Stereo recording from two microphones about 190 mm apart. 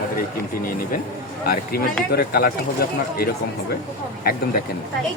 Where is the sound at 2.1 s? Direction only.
55° left (ahead or behind).